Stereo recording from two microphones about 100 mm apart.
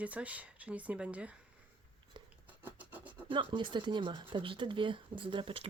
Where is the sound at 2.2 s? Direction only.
55° right (ahead or behind).